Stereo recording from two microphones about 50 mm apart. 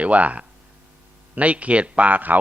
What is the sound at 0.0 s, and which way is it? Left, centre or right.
A man's voice, right.